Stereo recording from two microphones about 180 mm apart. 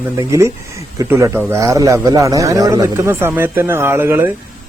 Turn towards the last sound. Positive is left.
turn(degrees=-15)  # may be behind; listen again after turning